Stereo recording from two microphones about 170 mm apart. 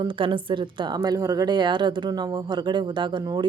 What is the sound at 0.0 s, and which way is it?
A woman's voice, 30° right (ahead or behind).